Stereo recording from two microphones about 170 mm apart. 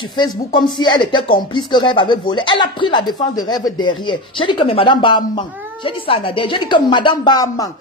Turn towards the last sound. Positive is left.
turn(degrees=20)  # may be behind; listen again after turning